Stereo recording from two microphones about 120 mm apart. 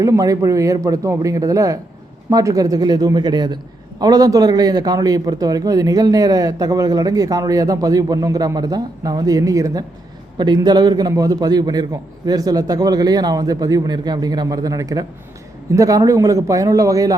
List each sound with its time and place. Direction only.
0.0 s a man's voice: 30° right (ahead or behind)